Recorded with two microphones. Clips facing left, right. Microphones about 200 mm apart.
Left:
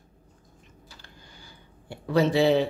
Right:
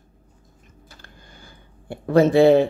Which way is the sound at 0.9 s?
50° right (ahead or behind).